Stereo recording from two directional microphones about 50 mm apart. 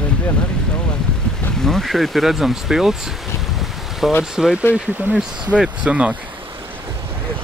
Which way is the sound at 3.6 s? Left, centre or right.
Centre.